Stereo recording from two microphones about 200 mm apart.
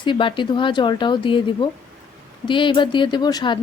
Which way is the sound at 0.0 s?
25° left (ahead or behind).